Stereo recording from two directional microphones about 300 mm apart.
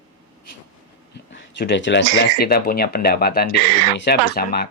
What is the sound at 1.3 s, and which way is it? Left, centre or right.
Speech, left.